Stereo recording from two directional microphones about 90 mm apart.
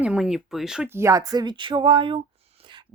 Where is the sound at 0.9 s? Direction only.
35° right (ahead or behind).